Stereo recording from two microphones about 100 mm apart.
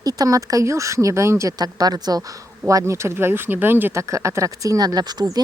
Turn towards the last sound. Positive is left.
turn(degrees=-45)  # may be behind; listen again after turning